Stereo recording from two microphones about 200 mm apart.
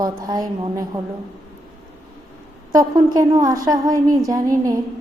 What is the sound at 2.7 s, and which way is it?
A woman's voice, 20° right (ahead or behind).